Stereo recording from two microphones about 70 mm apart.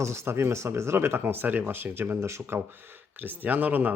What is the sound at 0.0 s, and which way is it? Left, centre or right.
Speech, right.